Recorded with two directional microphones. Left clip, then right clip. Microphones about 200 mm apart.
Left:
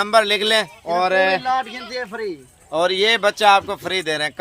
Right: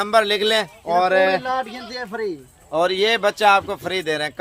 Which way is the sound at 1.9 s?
10° right (ahead or behind).